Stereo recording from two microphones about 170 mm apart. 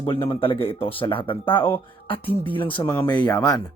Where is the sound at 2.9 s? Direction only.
10° left (ahead or behind).